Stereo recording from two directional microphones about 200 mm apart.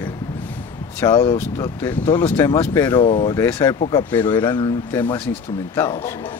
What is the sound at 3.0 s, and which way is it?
Speech, 30° left (ahead or behind).